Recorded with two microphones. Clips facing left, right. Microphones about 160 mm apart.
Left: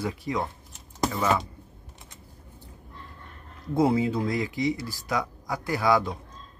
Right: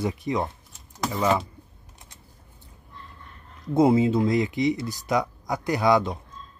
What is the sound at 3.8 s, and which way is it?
Speech, 20° right (ahead or behind).